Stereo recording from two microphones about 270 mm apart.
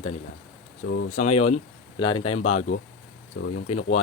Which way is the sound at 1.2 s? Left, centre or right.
Left.